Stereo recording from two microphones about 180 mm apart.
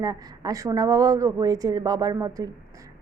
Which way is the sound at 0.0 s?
20° right (ahead or behind).